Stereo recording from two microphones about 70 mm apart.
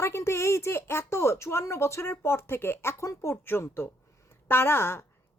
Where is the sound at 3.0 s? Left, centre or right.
Left.